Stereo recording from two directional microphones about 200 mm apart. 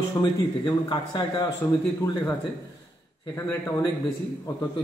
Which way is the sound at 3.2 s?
15° left (ahead or behind).